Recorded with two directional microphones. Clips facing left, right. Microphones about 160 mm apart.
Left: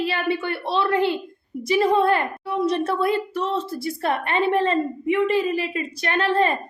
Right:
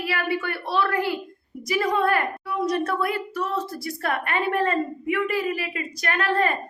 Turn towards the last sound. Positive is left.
turn(degrees=25)  # may be behind; listen again after turning